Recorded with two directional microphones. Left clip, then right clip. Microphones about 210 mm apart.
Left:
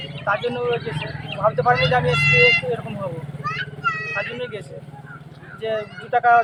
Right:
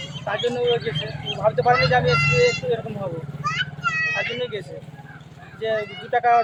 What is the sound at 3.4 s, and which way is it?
Vehicle, 45° left (ahead or behind).